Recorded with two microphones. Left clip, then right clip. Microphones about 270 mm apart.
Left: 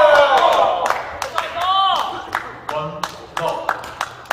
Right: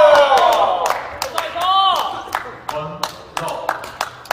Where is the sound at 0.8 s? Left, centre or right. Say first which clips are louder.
Even; right.